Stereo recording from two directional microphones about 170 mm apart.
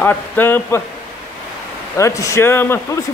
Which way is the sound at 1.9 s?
20° left (ahead or behind).